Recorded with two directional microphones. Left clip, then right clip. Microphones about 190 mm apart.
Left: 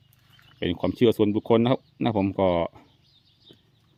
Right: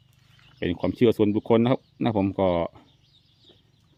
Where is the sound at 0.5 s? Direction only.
Centre (ahead or behind).